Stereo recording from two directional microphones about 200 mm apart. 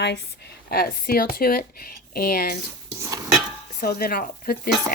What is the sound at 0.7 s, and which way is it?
Speech, 50° left (ahead or behind).